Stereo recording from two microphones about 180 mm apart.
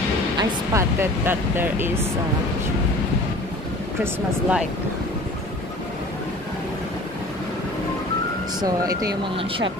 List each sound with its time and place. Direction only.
0.4 s speech: 15° right (ahead or behind)
4.0 s speech: 5° right (ahead or behind)
8.5 s speech: 20° right (ahead or behind)